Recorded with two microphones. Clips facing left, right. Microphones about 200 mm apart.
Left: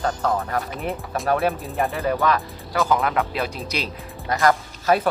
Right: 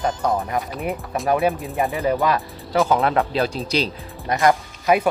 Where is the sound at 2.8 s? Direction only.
30° right (ahead or behind).